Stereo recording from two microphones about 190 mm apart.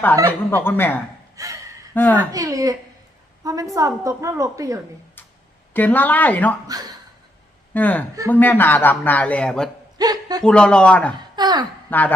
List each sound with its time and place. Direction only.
0.5 s a man's voice: 10° left (ahead or behind)
1.4 s gasp: 15° right (ahead or behind)
2.0 s a man's voice: 10° left (ahead or behind)
2.3 s a woman's voice: 20° right (ahead or behind)
5.7 s a man's voice: 10° left (ahead or behind)
6.7 s a man's voice: 20° right (ahead or behind)
7.7 s a man's voice: 10° left (ahead or behind)
10.0 s a sound: 20° right (ahead or behind)
10.4 s speech: 5° left (ahead or behind)
11.1 s speech: 20° right (ahead or behind)
11.9 s a man's voice: 10° left (ahead or behind)